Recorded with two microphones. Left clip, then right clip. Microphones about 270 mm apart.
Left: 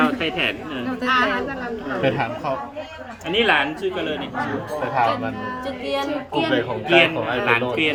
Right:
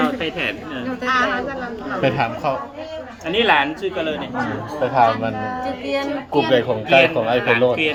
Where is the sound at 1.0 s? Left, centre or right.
Centre.